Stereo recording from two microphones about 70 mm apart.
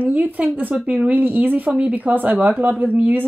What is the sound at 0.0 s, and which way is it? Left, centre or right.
Speech, right.